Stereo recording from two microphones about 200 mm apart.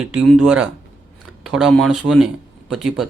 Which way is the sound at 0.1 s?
5° right (ahead or behind).